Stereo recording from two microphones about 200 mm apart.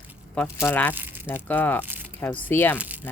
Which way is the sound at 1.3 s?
10° left (ahead or behind).